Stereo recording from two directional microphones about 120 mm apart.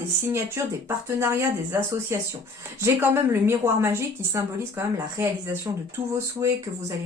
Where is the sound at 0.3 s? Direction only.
20° right (ahead or behind).